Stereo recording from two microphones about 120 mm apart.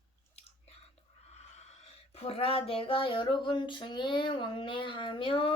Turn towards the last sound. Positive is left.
turn(degrees=45)  # may be behind; listen again after turning